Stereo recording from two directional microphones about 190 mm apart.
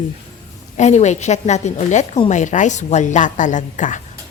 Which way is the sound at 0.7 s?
35° left (ahead or behind).